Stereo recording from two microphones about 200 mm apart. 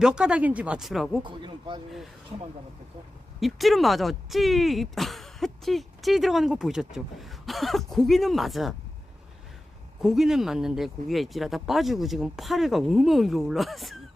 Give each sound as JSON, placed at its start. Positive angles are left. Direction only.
{"t": 0.0, "sound": "speech", "side_deg": -5}
{"t": 1.2, "sound": "speech", "side_deg": -25}
{"t": 3.4, "sound": "speech", "side_deg": 0}
{"t": 10.0, "sound": "speech", "side_deg": 0}